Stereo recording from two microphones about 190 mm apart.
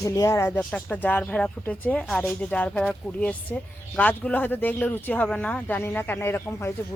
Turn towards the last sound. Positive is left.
turn(degrees=15)  # may be behind; listen again after turning